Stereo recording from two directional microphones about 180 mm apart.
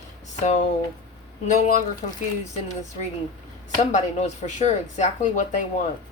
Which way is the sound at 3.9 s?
40° left (ahead or behind).